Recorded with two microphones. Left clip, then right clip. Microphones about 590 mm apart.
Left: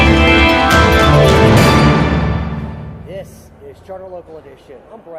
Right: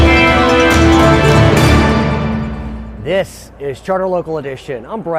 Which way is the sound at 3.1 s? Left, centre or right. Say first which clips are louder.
Right 15 dB; right.